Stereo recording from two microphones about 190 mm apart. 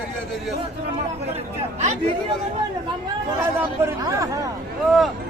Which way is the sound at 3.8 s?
15° right (ahead or behind).